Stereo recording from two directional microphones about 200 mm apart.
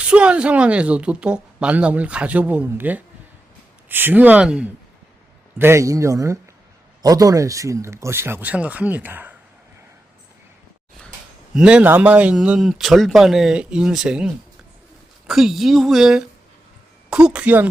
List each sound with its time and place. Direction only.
0.0 s speech: 5° right (ahead or behind)
11.5 s speech: 5° right (ahead or behind)
15.3 s speech: centre (ahead or behind)